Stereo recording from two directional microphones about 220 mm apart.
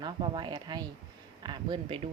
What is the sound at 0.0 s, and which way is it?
Speech, 20° right (ahead or behind).